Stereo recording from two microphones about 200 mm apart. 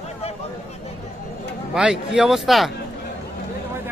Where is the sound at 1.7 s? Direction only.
5° right (ahead or behind).